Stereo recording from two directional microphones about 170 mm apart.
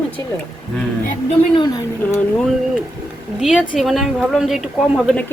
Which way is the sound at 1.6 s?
20° left (ahead or behind).